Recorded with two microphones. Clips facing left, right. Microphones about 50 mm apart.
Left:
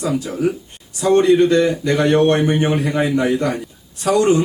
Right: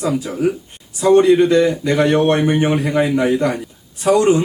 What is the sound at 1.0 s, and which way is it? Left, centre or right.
Speech, centre.